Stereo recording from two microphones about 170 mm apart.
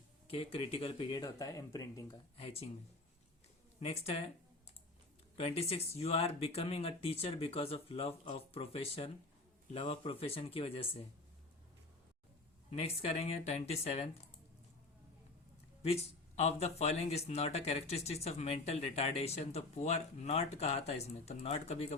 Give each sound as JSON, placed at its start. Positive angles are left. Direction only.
{"t": 0.3, "sound": "speech", "side_deg": 35}
{"t": 2.4, "sound": "speech", "side_deg": 35}
{"t": 3.8, "sound": "speech", "side_deg": 35}
{"t": 5.4, "sound": "speech", "side_deg": 35}
{"t": 12.7, "sound": "speech", "side_deg": 35}
{"t": 15.9, "sound": "speech", "side_deg": 40}